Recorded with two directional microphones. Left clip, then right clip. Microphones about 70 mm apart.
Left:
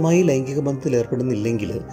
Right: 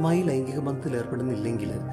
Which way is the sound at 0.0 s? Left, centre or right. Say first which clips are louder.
Left 7 dB; left.